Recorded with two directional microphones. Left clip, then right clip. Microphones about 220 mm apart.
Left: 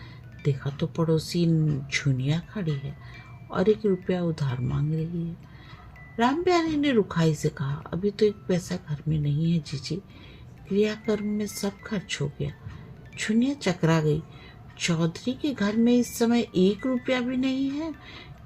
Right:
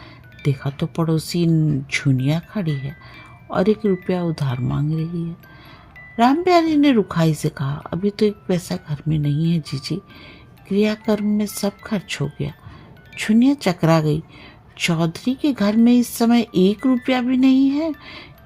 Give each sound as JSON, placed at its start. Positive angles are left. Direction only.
{"t": 0.4, "sound": "a woman's voice", "side_deg": -40}
{"t": 6.1, "sound": "a woman's voice", "side_deg": -45}